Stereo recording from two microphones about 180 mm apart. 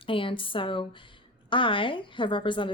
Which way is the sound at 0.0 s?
30° left (ahead or behind).